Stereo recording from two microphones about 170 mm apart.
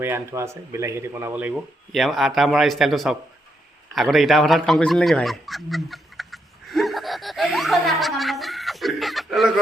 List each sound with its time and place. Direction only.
0.0 s speech: 15° right (ahead or behind)
1.9 s a man's voice: centre (ahead or behind)